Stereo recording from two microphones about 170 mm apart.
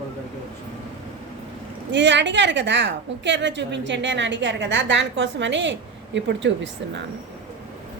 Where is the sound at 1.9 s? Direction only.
90° right.